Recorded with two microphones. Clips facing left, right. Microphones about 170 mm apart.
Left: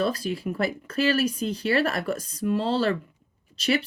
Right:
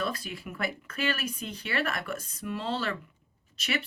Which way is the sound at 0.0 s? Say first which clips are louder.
Left 8 dB; 30° left (ahead or behind).